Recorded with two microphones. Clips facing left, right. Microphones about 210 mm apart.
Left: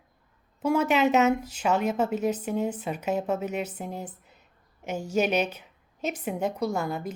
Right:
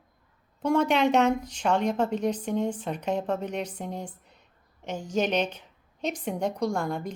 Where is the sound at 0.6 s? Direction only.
5° left (ahead or behind).